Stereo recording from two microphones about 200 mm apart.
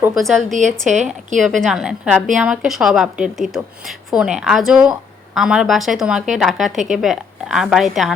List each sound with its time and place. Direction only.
0.0 s a woman's voice: centre (ahead or behind)
0.9 s speech: 35° right (ahead or behind)
1.4 s a woman's voice: centre (ahead or behind)